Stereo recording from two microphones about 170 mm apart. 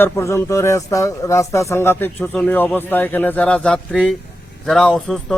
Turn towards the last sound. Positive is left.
turn(degrees=5)  # may be behind; listen again after turning